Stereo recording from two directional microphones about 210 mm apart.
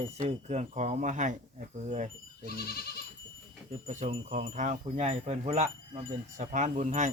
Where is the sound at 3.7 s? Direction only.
35° right (ahead or behind).